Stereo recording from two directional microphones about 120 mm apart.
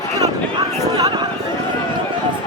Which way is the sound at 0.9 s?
35° right (ahead or behind).